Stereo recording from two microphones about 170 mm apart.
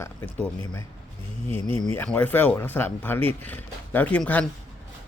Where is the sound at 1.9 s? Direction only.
10° left (ahead or behind).